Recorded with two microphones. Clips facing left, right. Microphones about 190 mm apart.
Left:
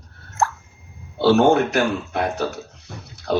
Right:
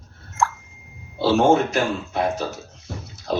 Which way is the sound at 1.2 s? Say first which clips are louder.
Left 2 dB; 65° left (ahead or behind).